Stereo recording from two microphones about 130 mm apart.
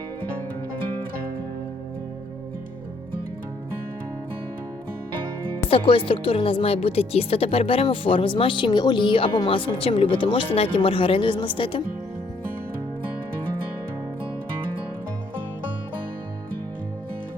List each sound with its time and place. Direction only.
5.6 s speech: 45° left (ahead or behind)